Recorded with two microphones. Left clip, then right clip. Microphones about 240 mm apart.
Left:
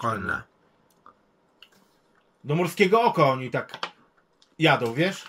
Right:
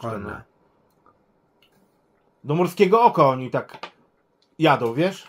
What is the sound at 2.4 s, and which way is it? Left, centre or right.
A man's voice, right.